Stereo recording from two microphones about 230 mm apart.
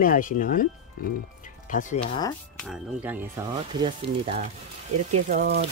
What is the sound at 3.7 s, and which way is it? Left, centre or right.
Speech, right.